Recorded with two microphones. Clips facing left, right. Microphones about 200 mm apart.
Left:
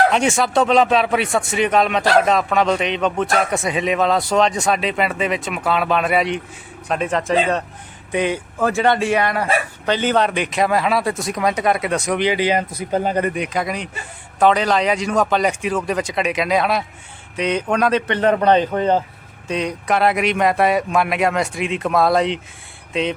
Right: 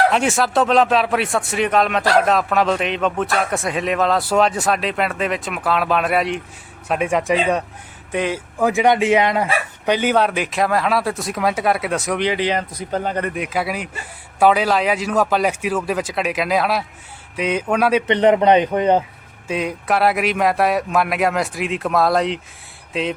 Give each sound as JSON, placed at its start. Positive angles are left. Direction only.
{"t": 0.1, "sound": "a man's voice", "side_deg": 0}
{"t": 8.1, "sound": "speech", "side_deg": 0}
{"t": 8.5, "sound": "speech", "side_deg": -15}
{"t": 13.3, "sound": "a man's voice", "side_deg": -5}
{"t": 18.1, "sound": "a man's voice", "side_deg": -20}
{"t": 19.5, "sound": "speech", "side_deg": -5}